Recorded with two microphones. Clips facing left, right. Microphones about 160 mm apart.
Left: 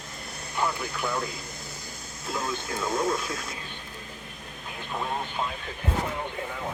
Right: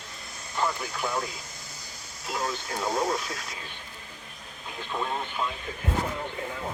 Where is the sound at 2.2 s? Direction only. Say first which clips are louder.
Even; 50° left (ahead or behind).